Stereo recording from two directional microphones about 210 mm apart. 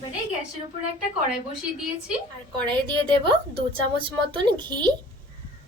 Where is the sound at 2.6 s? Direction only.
20° right (ahead or behind).